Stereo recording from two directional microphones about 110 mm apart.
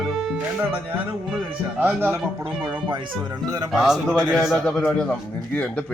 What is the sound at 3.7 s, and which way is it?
Speech, 5° right (ahead or behind).